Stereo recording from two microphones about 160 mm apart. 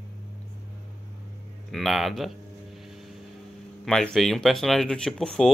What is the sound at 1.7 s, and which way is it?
Speech, centre (ahead or behind).